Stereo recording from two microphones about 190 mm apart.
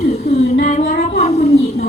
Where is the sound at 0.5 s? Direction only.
45° left (ahead or behind).